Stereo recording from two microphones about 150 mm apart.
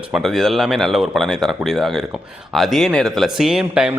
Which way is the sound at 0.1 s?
Centre (ahead or behind).